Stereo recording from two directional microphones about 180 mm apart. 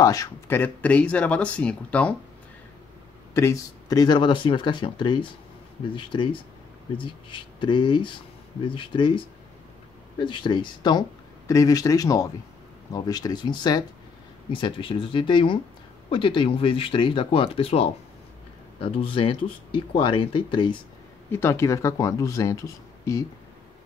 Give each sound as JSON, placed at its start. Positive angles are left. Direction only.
{"t": 0.0, "sound": "speech", "side_deg": 20}
{"t": 3.3, "sound": "speech", "side_deg": 15}
{"t": 21.3, "sound": "speech", "side_deg": 15}